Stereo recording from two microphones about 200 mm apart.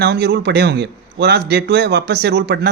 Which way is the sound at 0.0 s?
55° right (ahead or behind).